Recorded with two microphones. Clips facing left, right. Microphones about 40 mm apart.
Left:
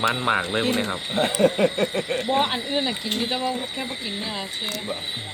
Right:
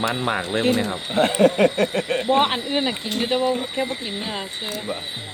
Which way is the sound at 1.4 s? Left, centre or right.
Right.